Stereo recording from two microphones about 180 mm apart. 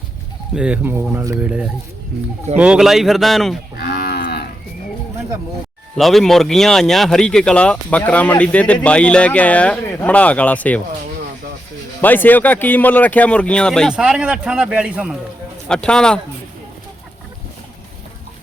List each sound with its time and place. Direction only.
0.5 s speech: 5° right (ahead or behind)
3.8 s moo: 60° left (ahead or behind)
6.0 s speech: centre (ahead or behind)
11.9 s speech: 10° left (ahead or behind); by 15.1 s 5° right (ahead or behind)
15.7 s speech: 5° left (ahead or behind)